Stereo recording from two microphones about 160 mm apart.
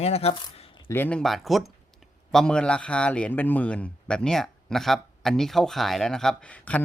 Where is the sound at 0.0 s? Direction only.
40° left (ahead or behind).